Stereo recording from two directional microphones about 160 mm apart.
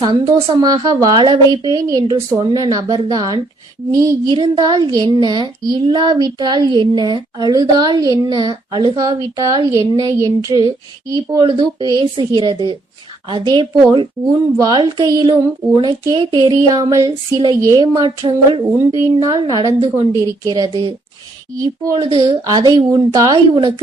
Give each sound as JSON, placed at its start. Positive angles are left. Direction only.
{"t": 0.6, "sound": "speech", "side_deg": -25}
{"t": 22.1, "sound": "speech", "side_deg": -35}
{"t": 22.4, "sound": "speech", "side_deg": -25}